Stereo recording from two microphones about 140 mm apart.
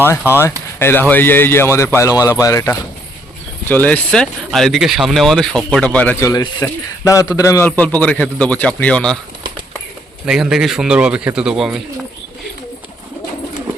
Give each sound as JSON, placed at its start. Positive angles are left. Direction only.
{"t": 0.3, "sound": "a man's voice", "side_deg": 20}
{"t": 3.7, "sound": "speech", "side_deg": 10}
{"t": 6.2, "sound": "a man's voice", "side_deg": 30}
{"t": 7.6, "sound": "speech", "side_deg": 10}
{"t": 10.2, "sound": "speech", "side_deg": -5}